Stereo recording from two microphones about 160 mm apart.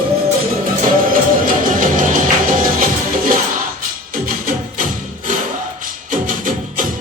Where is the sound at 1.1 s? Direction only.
60° right (ahead or behind).